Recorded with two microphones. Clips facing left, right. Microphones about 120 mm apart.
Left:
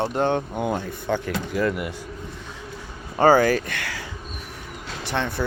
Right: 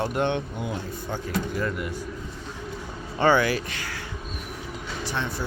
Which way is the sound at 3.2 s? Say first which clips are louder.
Left 4 dB; 40° left (ahead or behind).